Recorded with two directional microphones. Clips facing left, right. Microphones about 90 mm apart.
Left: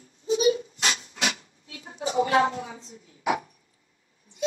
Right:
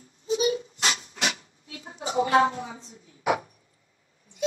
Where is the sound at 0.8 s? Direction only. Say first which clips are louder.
Even; 30° right (ahead or behind).